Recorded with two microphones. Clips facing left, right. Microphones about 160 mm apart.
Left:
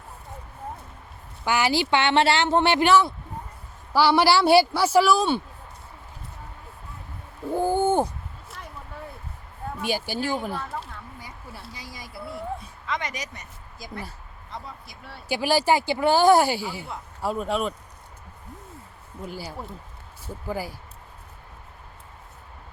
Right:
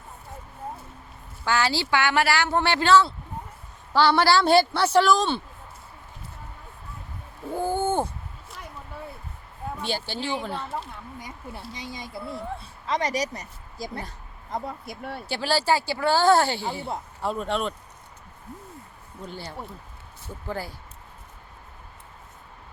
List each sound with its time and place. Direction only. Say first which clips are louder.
1.5 s speech: left 2 dB; 15° left (ahead or behind)
7.5 s a sound: left 3 dB; 15° left (ahead or behind)
9.8 s speech: left 4 dB; 10° left (ahead or behind)
11.7 s speech: right 4 dB; 25° right (ahead or behind)
12.8 s speech: right 8 dB; 35° right (ahead or behind)
14.5 s speech: right 7 dB; 50° right (ahead or behind)
15.3 s speech: left 3 dB; 15° left (ahead or behind)
19.2 s speech: left 2 dB; 5° left (ahead or behind)